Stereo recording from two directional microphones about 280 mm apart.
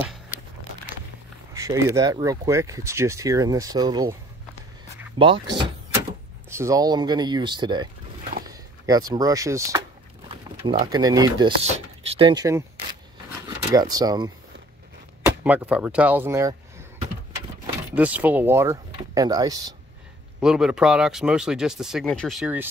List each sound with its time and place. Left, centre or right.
0.0 s crumpling: centre
1.6 s speech: centre
5.2 s speech: centre
13.7 s speech: centre
17.9 s speech: centre
20.3 s speech: centre